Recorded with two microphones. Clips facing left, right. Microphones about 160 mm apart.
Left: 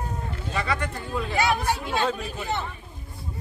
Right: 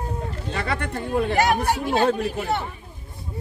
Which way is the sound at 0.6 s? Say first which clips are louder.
Right 1 dB; 60° right (ahead or behind).